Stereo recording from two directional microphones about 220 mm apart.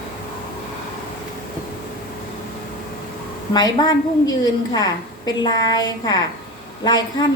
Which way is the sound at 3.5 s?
20° left (ahead or behind).